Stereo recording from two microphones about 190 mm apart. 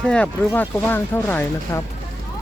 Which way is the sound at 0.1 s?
10° left (ahead or behind).